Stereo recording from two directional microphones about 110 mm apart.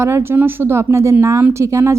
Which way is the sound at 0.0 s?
20° right (ahead or behind).